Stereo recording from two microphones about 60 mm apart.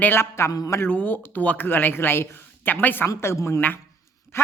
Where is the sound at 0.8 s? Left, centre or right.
Left.